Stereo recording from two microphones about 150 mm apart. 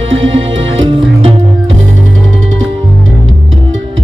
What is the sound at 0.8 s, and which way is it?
Music, 35° right (ahead or behind).